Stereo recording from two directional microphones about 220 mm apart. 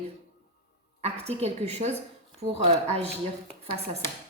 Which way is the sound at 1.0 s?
30° right (ahead or behind).